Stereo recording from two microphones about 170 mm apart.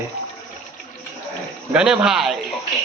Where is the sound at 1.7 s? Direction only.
5° right (ahead or behind).